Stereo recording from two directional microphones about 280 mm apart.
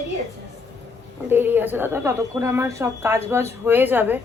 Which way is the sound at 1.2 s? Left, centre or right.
Centre.